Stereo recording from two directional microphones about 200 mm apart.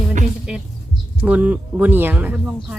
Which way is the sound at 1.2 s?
10° right (ahead or behind).